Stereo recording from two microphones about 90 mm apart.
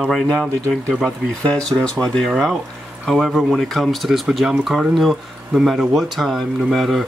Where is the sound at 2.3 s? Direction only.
5° right (ahead or behind).